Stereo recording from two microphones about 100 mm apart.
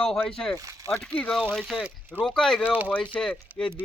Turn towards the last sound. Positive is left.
turn(degrees=10)  # may be behind; listen again after turning